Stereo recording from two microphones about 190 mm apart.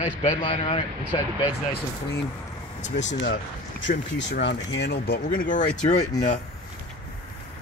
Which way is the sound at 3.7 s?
70° left (ahead or behind).